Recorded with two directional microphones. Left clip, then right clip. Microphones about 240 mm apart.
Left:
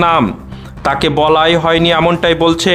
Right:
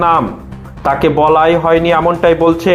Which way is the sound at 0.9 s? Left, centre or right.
Left.